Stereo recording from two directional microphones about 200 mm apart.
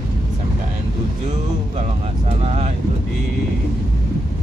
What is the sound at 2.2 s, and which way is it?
Speech, 30° right (ahead or behind).